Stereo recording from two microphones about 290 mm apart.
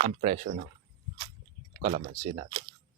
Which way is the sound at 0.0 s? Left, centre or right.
Right.